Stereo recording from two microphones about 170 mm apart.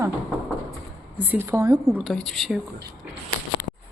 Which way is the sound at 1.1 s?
10° right (ahead or behind).